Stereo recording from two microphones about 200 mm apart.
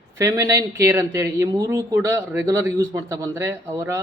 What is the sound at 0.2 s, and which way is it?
Speech, 15° right (ahead or behind).